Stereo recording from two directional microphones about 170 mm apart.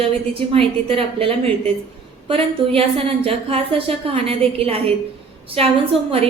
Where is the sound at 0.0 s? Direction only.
35° right (ahead or behind).